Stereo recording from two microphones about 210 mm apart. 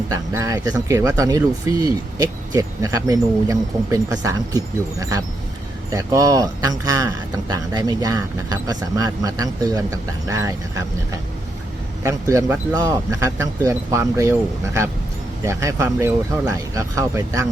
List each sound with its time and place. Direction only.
0.1 s speech: 15° right (ahead or behind)
12.3 s speech: 15° right (ahead or behind)